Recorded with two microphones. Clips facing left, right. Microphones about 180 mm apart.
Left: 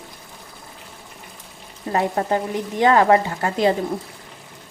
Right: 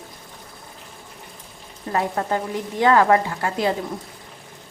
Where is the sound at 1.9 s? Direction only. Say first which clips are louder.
Left 2 dB; 25° left (ahead or behind).